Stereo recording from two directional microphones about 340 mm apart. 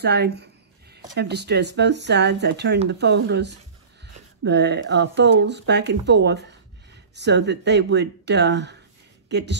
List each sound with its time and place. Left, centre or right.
0.0 s speech: right